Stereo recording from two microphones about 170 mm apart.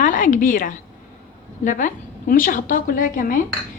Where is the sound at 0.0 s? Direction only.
50° left (ahead or behind).